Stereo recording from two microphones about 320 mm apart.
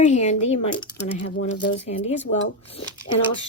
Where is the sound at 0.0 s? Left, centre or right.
Left.